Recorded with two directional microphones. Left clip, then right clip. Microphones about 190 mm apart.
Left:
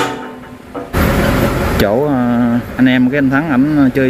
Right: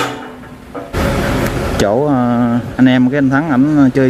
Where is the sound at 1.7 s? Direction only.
10° right (ahead or behind).